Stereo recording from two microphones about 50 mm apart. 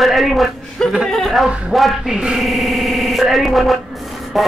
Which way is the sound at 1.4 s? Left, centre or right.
Right.